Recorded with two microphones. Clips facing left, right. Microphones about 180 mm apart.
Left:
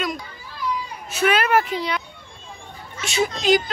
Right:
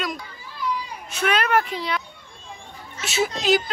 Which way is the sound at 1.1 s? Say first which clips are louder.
Left 2 dB; 5° left (ahead or behind).